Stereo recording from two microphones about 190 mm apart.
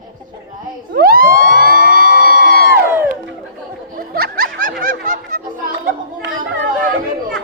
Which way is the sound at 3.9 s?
50° right (ahead or behind).